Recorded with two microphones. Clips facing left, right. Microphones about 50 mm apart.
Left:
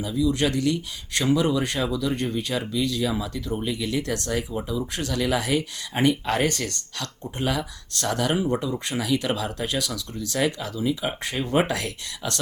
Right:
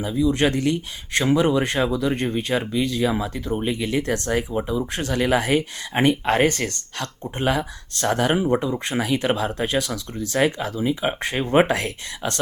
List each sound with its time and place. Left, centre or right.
0.0 s speech: right